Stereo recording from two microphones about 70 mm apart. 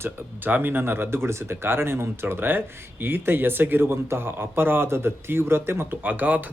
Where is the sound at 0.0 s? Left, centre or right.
Right.